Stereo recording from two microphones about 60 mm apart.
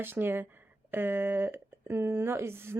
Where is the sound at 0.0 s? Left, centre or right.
Right.